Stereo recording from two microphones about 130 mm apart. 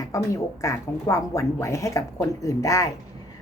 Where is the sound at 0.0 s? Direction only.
25° left (ahead or behind).